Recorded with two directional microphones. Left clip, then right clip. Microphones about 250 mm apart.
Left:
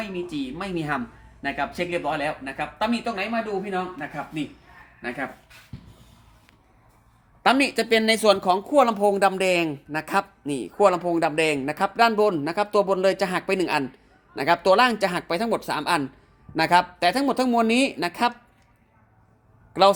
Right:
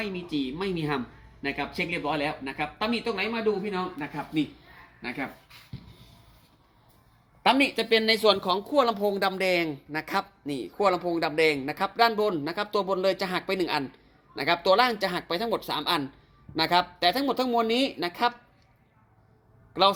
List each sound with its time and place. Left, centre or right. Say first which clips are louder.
0.0 s speech: left 1 dB; left
7.4 s speech: left 3 dB; left
19.7 s speech: left 5 dB; left